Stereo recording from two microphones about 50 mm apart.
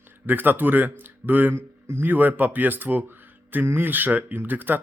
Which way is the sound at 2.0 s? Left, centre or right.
Right.